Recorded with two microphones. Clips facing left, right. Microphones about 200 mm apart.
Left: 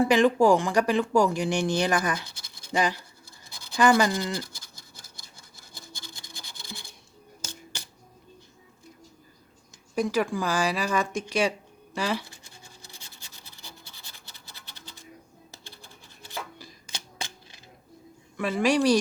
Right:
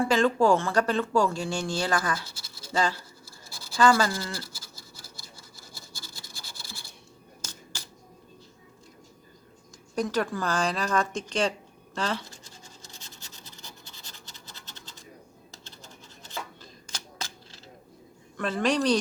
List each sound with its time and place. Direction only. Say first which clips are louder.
0.0 s speech: left 3 dB; 15° left (ahead or behind)
5.9 s scratch: left 1 dB; 20° left (ahead or behind)
9.9 s speech: left 2 dB; 10° left (ahead or behind)
11.9 s scratch: left 2 dB; 10° left (ahead or behind)
15.6 s rub: right 1 dB; 10° left (ahead or behind)
17.2 s typewriter: left 2 dB; 15° left (ahead or behind)
18.3 s speech: left 2 dB; 10° left (ahead or behind)